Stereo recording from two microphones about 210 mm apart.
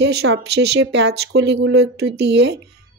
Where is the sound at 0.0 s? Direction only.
55° right (ahead or behind).